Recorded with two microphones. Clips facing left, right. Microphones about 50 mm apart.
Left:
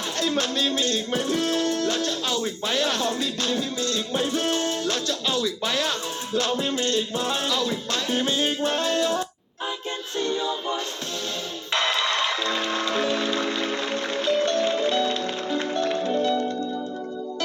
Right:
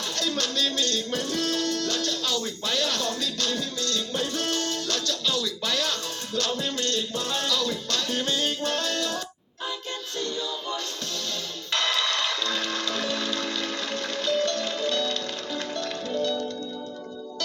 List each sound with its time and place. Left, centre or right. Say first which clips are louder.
0.2 s music: left 3 dB; centre